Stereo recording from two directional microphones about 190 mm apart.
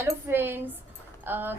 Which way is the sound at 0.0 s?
10° right (ahead or behind).